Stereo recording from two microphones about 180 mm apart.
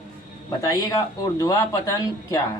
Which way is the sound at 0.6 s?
20° left (ahead or behind).